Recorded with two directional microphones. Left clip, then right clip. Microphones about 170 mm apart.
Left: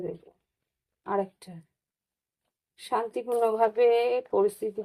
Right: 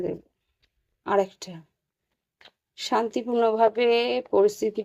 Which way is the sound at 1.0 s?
40° right (ahead or behind).